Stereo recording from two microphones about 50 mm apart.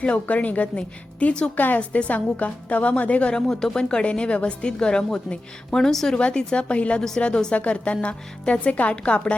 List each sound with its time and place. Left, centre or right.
0.0 s a woman's voice: left
1.5 s a woman's voice: left
1.8 s a woman's voice: left
3.4 s speech: centre
3.8 s a woman's voice: left
6.1 s a woman's voice: left